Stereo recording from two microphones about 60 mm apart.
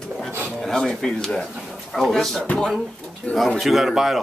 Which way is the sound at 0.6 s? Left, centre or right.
Centre.